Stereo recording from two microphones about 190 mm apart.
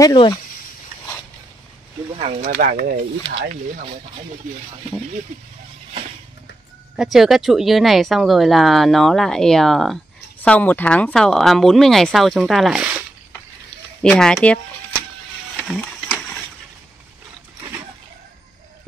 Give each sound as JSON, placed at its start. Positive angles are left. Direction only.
{"t": 0.0, "sound": "speech", "side_deg": 20}
{"t": 2.4, "sound": "speech", "side_deg": -50}
{"t": 7.0, "sound": "speech", "side_deg": 0}
{"t": 14.0, "sound": "speech", "side_deg": 5}
{"t": 15.6, "sound": "printer", "side_deg": 0}